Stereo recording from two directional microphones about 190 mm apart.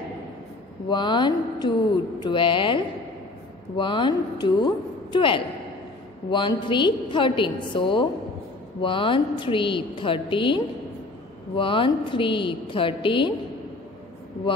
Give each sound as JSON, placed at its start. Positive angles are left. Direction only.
{"t": 0.8, "sound": "a woman's voice", "side_deg": 25}